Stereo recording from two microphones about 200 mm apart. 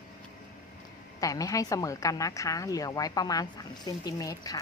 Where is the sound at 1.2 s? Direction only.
15° left (ahead or behind).